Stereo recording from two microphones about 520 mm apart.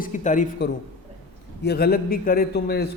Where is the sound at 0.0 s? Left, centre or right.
Centre.